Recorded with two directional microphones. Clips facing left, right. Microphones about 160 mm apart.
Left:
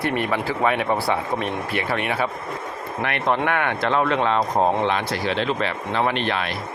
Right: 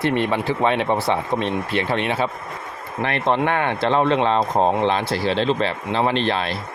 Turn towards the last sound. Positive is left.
turn(degrees=-30)  # may be behind; listen again after turning